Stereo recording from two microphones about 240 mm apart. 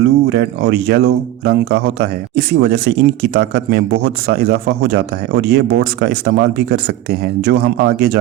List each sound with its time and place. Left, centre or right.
0.0 s speech: right